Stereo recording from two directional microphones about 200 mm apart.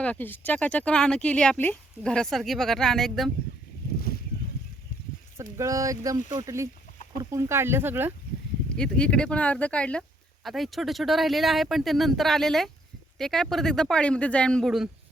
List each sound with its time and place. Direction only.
0.0 s speech: 10° left (ahead or behind)
5.4 s speech: 15° right (ahead or behind)
8.7 s speech: 5° left (ahead or behind)